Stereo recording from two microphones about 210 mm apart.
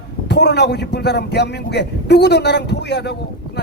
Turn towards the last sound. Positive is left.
turn(degrees=55)  # may be behind; listen again after turning